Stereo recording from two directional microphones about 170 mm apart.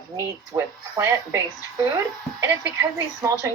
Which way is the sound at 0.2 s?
15° right (ahead or behind).